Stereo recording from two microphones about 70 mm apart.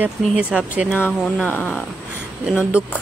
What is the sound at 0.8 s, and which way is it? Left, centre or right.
Speech, left.